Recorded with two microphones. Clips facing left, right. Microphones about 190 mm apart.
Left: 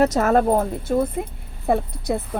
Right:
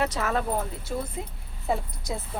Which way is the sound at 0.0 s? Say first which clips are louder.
Left 10 dB; 45° left (ahead or behind).